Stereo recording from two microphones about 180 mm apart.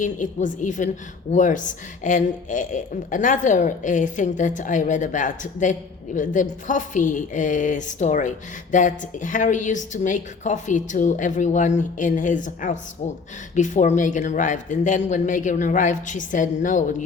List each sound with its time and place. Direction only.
0.0 s a woman's voice: 45° left (ahead or behind)